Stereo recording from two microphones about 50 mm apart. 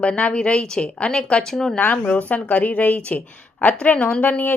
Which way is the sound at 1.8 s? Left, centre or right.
Left.